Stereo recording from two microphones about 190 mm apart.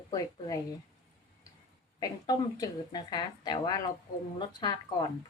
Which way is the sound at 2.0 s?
20° left (ahead or behind).